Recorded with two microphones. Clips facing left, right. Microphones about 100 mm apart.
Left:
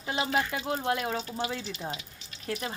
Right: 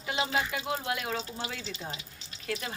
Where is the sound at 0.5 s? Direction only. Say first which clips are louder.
Left 3 dB; 35° left (ahead or behind).